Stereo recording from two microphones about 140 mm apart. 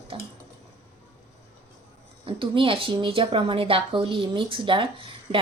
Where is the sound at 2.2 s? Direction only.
40° right (ahead or behind).